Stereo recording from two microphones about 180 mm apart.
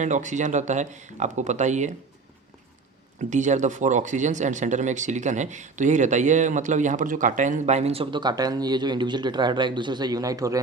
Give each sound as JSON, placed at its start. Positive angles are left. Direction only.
{"t": 0.0, "sound": "speech", "side_deg": -45}
{"t": 3.2, "sound": "speech", "side_deg": -40}